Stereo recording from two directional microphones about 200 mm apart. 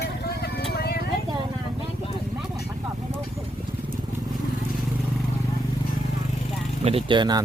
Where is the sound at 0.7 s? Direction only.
50° left (ahead or behind).